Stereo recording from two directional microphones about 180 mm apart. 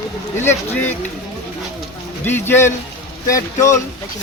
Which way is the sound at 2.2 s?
10° left (ahead or behind).